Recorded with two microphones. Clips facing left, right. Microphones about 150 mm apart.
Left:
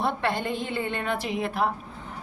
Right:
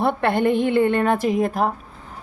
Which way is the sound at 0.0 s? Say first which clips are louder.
Right 8 dB; 55° right (ahead or behind).